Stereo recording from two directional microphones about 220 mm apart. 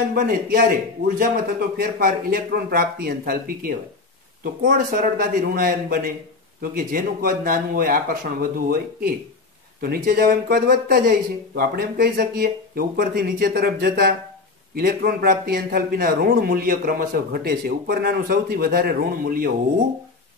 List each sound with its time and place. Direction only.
0.1 s a man's voice: 40° right (ahead or behind)